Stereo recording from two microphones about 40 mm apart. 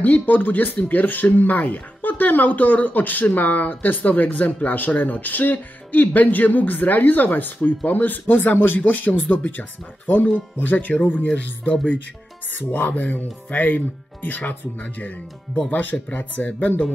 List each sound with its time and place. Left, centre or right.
0.0 s speech: left
15.7 s speech: left